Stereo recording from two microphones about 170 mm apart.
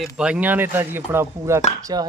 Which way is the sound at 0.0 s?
5° right (ahead or behind).